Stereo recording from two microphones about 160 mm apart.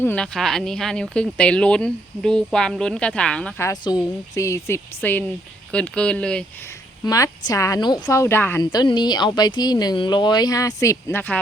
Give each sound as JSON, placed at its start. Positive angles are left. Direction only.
{"t": 0.0, "sound": "speech", "side_deg": 10}
{"t": 3.6, "sound": "speech", "side_deg": 25}
{"t": 7.0, "sound": "speech", "side_deg": 25}
{"t": 8.7, "sound": "speech", "side_deg": 25}